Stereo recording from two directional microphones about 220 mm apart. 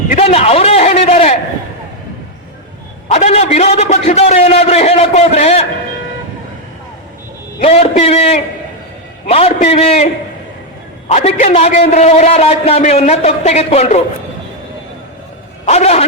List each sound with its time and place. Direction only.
0.1 s a sound: 25° left (ahead or behind)
3.1 s a man's voice: 30° left (ahead or behind)
7.6 s a man's voice: 30° left (ahead or behind)
11.1 s a man's voice: 30° left (ahead or behind)
15.6 s a man's voice: 30° left (ahead or behind)